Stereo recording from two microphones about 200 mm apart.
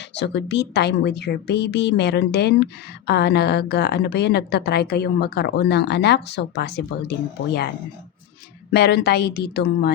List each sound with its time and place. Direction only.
0.2 s a woman's voice: 60° left (ahead or behind)
8.7 s speech: 55° left (ahead or behind)